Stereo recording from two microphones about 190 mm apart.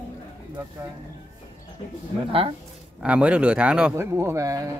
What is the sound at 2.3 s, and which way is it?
Speech, 30° right (ahead or behind).